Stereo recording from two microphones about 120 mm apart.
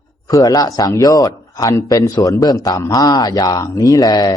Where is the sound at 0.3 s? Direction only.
30° left (ahead or behind).